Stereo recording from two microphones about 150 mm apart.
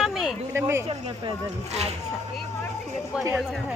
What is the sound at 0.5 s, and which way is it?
Speech, 20° right (ahead or behind).